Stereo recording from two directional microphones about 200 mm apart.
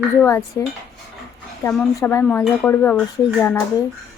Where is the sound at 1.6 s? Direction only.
15° left (ahead or behind).